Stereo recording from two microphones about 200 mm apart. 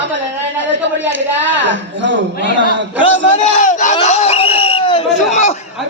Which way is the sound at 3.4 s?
40° left (ahead or behind).